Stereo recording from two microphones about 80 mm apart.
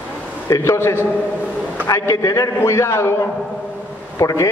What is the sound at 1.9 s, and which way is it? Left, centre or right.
A man's voice, left.